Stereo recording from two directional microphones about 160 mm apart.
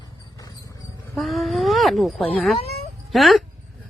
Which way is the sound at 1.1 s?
Centre (ahead or behind).